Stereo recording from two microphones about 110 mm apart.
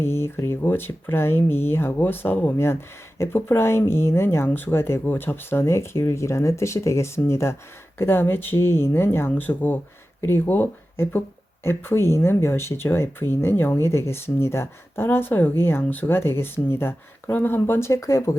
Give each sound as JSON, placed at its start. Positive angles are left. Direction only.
{"t": 0.0, "sound": "speech", "side_deg": 25}